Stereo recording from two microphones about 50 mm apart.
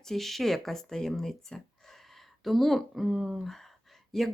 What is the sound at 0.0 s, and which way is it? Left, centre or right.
Speech, centre.